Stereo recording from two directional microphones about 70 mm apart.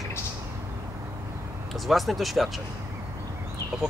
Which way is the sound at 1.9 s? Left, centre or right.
Centre.